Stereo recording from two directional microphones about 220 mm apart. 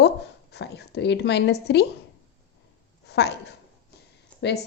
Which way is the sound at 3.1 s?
50° left (ahead or behind).